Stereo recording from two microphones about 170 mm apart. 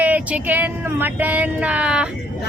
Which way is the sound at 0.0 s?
10° right (ahead or behind).